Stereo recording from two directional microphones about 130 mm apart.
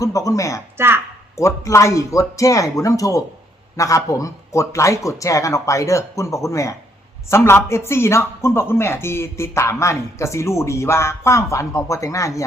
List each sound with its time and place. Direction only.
0.0 s speech: 25° left (ahead or behind)
0.8 s a woman's voice: 20° right (ahead or behind)
1.4 s speech: 25° left (ahead or behind)